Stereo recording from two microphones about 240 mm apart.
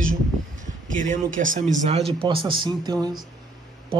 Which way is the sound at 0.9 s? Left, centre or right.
Right.